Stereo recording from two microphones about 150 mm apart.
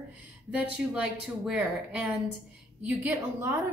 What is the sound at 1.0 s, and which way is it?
A woman's voice, 5° right (ahead or behind).